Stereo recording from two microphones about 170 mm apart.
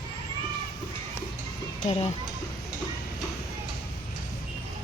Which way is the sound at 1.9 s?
35° left (ahead or behind).